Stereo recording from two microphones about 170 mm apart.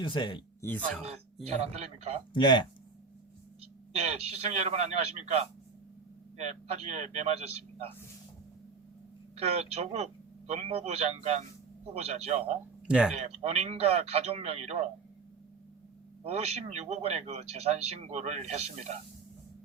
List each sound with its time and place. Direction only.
0.0 s speech: 25° left (ahead or behind)
0.6 s speech: 10° left (ahead or behind)
1.5 s speech: 40° right (ahead or behind)
2.3 s speech: 25° left (ahead or behind)
3.9 s speech: 40° right (ahead or behind)
9.3 s speech: 40° right (ahead or behind)
12.9 s speech: 5° right (ahead or behind)
13.1 s speech: 40° right (ahead or behind)
16.2 s speech: 40° right (ahead or behind)